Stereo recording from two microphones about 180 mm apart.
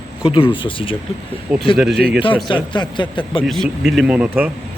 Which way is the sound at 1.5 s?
5° right (ahead or behind).